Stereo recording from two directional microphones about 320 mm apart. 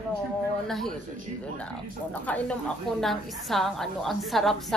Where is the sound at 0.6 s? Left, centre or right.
Centre.